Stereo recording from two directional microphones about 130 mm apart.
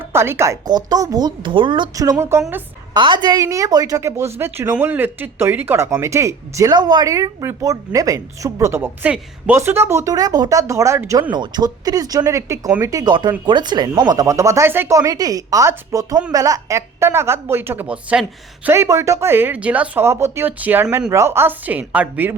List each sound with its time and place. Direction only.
0.1 s a woman's voice: 20° right (ahead or behind)
0.7 s speech: 30° right (ahead or behind)
2.0 s a woman's voice: 25° right (ahead or behind)
2.9 s a woman's voice: 35° right (ahead or behind)
11.3 s a woman's voice: 35° right (ahead or behind); by 22.4 s 15° right (ahead or behind)